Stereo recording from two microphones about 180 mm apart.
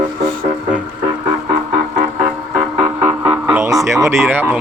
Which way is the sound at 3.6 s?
15° right (ahead or behind).